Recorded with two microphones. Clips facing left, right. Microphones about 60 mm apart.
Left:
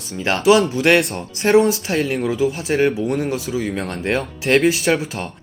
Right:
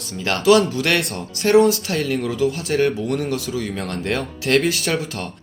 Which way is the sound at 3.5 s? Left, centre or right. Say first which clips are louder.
Left 2 dB; centre.